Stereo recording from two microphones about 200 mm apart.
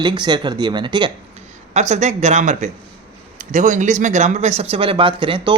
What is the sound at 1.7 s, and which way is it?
A man's voice, 35° right (ahead or behind).